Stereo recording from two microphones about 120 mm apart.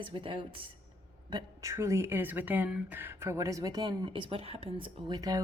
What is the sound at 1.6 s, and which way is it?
Speech, 25° right (ahead or behind).